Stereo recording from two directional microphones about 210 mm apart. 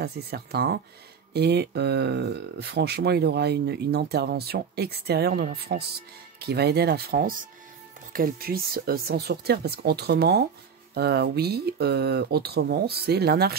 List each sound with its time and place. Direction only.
0.0 s speech: 50° right (ahead or behind)